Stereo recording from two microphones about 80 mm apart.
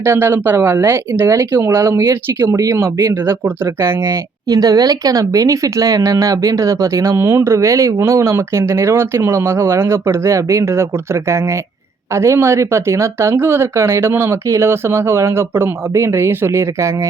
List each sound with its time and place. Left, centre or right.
0.0 s speech: right
4.4 s speech: right